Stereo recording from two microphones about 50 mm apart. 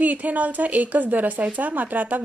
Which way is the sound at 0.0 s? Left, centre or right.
Right.